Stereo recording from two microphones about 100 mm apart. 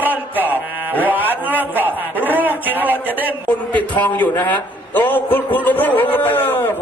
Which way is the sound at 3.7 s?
15° left (ahead or behind).